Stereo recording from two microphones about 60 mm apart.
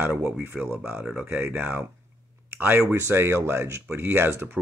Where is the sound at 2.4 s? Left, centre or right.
Right.